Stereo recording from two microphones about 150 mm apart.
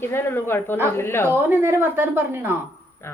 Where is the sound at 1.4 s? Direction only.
15° right (ahead or behind).